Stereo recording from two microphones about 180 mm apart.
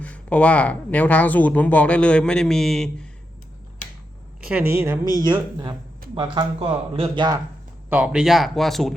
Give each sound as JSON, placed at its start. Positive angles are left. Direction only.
{"t": 0.0, "sound": "speech", "side_deg": 5}
{"t": 4.4, "sound": "a woman's voice", "side_deg": -5}
{"t": 5.3, "sound": "speech", "side_deg": -25}
{"t": 7.9, "sound": "speech", "side_deg": -10}